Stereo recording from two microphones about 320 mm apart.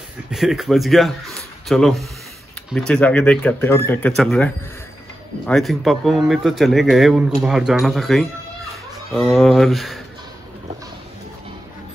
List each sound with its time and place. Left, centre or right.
0.3 s speech: centre
5.5 s speech: centre